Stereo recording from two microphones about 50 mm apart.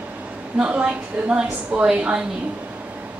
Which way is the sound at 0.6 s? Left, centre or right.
Right.